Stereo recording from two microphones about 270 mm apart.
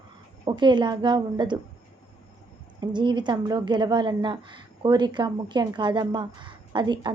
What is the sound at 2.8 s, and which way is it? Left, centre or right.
A woman's voice, centre.